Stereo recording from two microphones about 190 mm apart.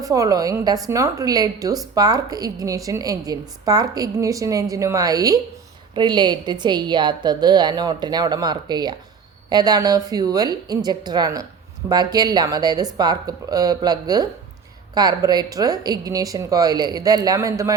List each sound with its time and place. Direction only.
0.0 s a woman's voice: 20° right (ahead or behind)